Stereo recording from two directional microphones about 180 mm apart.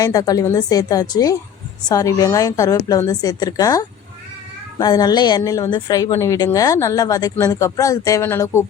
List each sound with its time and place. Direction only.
0.0 s a woman's voice: 20° left (ahead or behind)